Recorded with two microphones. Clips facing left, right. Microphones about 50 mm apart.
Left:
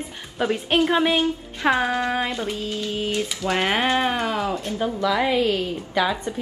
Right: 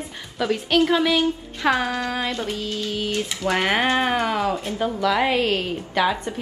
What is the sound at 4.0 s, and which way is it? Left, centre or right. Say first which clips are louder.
Speech: right 1 dB; centre.